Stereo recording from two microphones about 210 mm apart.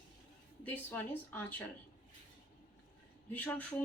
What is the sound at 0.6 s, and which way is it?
Speech, 10° left (ahead or behind).